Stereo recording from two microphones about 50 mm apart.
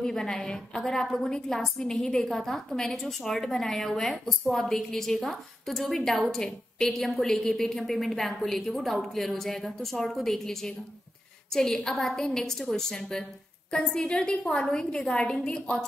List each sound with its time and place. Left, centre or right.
0.0 s a woman's voice: centre